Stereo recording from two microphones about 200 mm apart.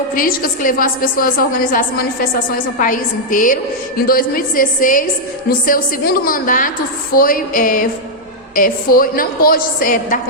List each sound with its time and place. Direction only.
0.1 s a woman's voice: 45° left (ahead or behind)